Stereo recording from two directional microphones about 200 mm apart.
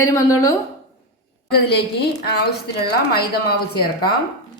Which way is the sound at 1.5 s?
55° left (ahead or behind).